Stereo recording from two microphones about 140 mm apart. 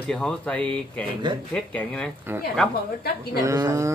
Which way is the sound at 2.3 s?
15° right (ahead or behind).